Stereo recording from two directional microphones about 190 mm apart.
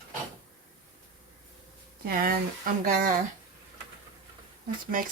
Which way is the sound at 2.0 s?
50° right (ahead or behind).